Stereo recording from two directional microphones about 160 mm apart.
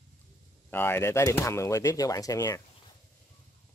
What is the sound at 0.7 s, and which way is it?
Speech, 15° left (ahead or behind).